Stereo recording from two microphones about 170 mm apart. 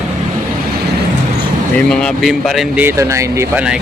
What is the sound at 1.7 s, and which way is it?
Speech, centre (ahead or behind).